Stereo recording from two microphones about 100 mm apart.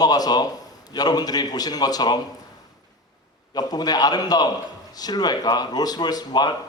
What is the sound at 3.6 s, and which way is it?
A man's voice, 40° left (ahead or behind).